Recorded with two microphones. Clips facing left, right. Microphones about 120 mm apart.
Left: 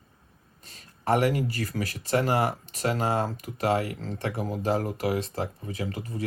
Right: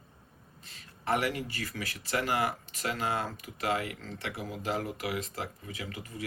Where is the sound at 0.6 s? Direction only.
40° left (ahead or behind).